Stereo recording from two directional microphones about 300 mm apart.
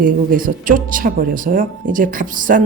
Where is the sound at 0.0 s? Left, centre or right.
Right.